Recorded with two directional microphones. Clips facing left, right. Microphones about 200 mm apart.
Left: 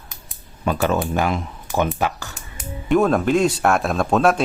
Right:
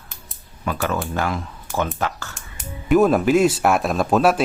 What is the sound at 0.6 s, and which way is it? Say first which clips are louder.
Speech: left 4 dB; 25° left (ahead or behind).